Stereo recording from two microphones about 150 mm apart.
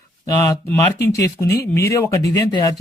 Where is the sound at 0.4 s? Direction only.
20° left (ahead or behind).